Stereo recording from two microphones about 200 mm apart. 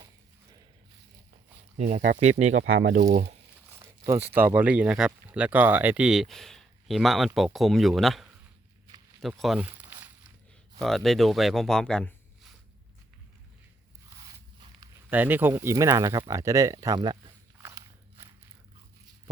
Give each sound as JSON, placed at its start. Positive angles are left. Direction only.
{"t": 1.8, "sound": "speech", "side_deg": -35}
{"t": 2.6, "sound": "speech", "side_deg": -90}
{"t": 2.9, "sound": "speech", "side_deg": -45}
{"t": 3.7, "sound": "speech", "side_deg": -15}
{"t": 9.8, "sound": "a sound", "side_deg": -10}
{"t": 10.8, "sound": "speech", "side_deg": 0}
{"t": 14.8, "sound": "speech", "side_deg": -10}
{"t": 17.6, "sound": "walk", "side_deg": -15}